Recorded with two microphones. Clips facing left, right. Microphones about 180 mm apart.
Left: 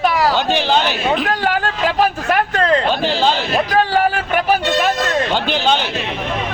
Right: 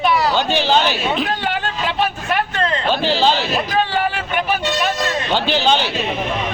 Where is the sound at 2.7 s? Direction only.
45° left (ahead or behind).